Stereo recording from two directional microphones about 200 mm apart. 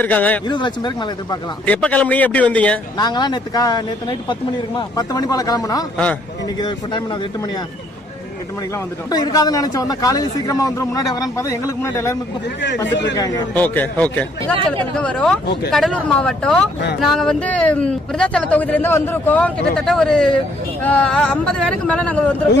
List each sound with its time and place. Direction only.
0.0 s speech: 10° left (ahead or behind)
0.4 s speech: 20° left (ahead or behind)
1.6 s speech: 5° left (ahead or behind)
3.0 s speech: 20° left (ahead or behind)
8.7 s speech: 20° left (ahead or behind)
12.9 s a man's voice: 60° left (ahead or behind)
13.1 s speech: 20° left (ahead or behind)